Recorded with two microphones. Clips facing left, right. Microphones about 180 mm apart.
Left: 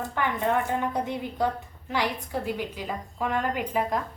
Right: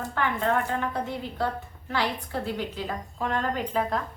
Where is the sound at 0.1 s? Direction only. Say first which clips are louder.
Even; 15° left (ahead or behind).